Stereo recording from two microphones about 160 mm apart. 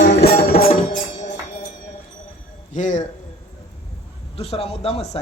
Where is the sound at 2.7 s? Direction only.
50° left (ahead or behind).